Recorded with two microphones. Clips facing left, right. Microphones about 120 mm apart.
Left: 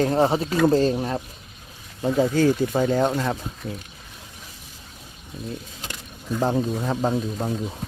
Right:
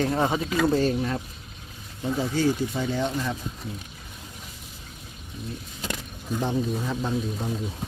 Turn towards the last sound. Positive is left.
turn(degrees=50)  # may be behind; listen again after turning